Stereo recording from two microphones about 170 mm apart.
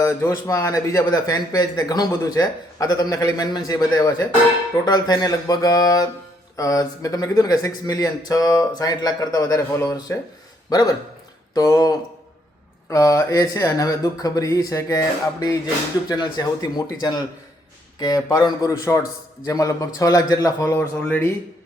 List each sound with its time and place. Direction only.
0.0 s a man's voice: 15° left (ahead or behind)
21.0 s speech: 10° left (ahead or behind)